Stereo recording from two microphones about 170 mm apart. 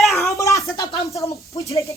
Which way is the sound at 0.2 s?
15° left (ahead or behind).